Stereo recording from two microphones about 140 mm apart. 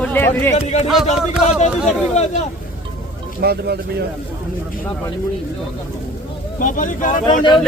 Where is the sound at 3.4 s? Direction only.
90° right.